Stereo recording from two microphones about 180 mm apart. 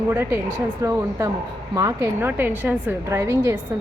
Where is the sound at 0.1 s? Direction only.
15° right (ahead or behind).